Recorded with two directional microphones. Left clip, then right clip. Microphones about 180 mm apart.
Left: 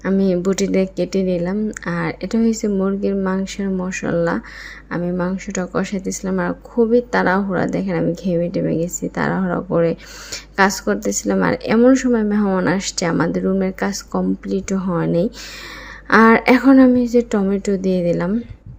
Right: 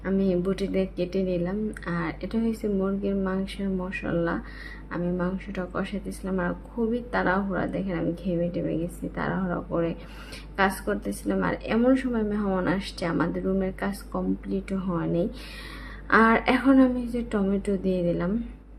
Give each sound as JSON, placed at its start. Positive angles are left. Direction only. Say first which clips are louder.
{"t": 0.0, "sound": "a woman's voice", "louder": "left 8 dB", "side_deg": 40}